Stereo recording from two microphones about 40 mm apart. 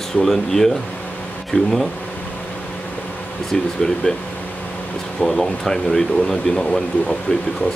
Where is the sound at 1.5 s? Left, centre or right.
Left.